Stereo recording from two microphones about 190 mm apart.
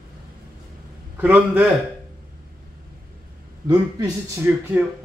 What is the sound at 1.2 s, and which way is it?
Speech, 10° right (ahead or behind).